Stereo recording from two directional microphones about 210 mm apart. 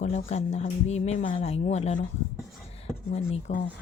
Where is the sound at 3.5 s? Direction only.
35° left (ahead or behind).